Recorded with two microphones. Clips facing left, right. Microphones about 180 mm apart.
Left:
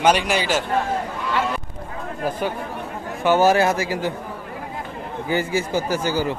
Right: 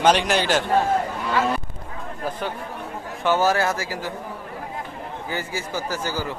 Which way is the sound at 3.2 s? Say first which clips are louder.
Left 4 dB; 15° left (ahead or behind).